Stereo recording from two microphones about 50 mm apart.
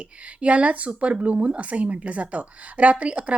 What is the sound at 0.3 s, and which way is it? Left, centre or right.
Speech, right.